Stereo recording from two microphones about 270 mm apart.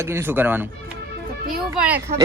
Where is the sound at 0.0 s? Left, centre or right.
Centre.